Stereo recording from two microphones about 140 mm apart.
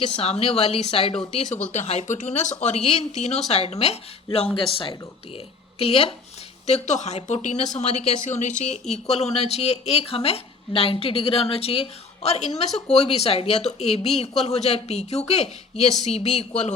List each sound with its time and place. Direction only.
0.2 s a woman's voice: 50° left (ahead or behind)
6.7 s a woman's voice: 55° left (ahead or behind)